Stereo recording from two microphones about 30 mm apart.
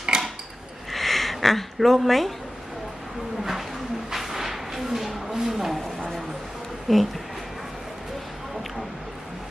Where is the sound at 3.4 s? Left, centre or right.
Centre.